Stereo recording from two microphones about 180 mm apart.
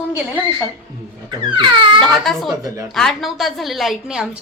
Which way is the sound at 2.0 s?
Centre (ahead or behind).